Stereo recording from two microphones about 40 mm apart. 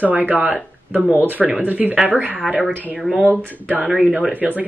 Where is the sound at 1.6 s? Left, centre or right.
Right.